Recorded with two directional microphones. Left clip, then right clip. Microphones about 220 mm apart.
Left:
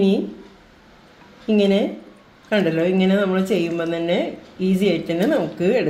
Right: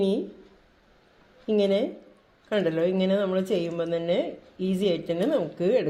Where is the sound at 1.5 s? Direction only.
35° right (ahead or behind).